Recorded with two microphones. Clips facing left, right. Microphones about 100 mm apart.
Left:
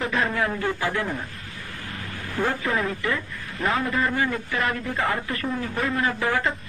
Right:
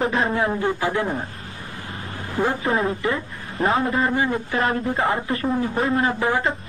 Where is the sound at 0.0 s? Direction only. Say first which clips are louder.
Right 3 dB; 25° right (ahead or behind).